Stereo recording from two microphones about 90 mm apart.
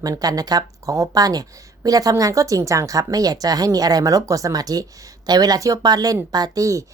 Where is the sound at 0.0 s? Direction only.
45° right (ahead or behind).